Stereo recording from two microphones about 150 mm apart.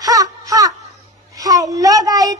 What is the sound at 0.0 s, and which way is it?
Wail, 25° right (ahead or behind).